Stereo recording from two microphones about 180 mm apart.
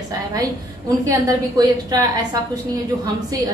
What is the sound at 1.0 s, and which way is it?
A woman's voice, 20° right (ahead or behind).